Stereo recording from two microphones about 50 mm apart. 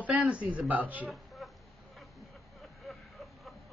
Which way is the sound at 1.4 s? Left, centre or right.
Centre.